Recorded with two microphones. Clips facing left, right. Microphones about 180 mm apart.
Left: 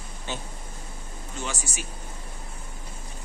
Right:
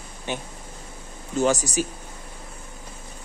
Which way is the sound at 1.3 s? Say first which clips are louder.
Right 14 dB; 40° right (ahead or behind).